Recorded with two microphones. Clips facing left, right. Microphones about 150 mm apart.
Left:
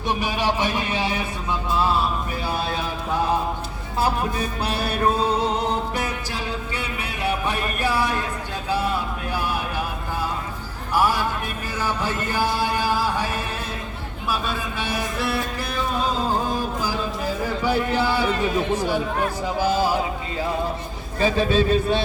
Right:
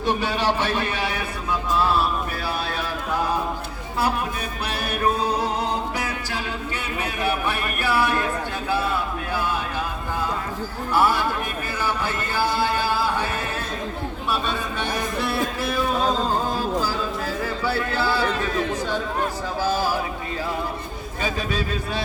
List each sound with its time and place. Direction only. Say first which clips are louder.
0.2 s speech: even; 10° left (ahead or behind)
4.4 s music: left 3 dB; 30° left (ahead or behind)
7.4 s music: left 1 dB; 20° left (ahead or behind)
10.9 s speech: right 1 dB; 15° left (ahead or behind)
12.0 s a sound: left 1 dB; 15° left (ahead or behind)
14.3 s speech: even; 5° left (ahead or behind)
16.8 s a man's voice: even; 15° left (ahead or behind)
21.2 s speech: left 7 dB; 30° left (ahead or behind)